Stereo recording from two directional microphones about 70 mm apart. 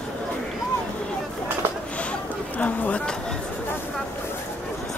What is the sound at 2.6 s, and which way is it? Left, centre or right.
Speech, centre.